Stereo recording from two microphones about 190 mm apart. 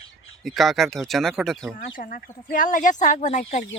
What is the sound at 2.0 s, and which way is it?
Speech, 45° left (ahead or behind).